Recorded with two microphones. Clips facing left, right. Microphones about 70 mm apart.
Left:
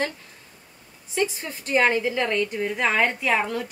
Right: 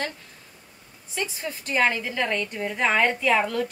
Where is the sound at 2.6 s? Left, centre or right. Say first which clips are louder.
Right 2 dB; centre.